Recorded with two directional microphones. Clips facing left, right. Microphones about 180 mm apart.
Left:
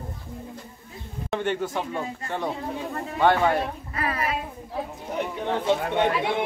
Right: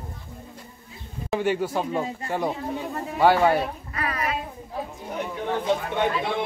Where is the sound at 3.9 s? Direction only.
30° left (ahead or behind).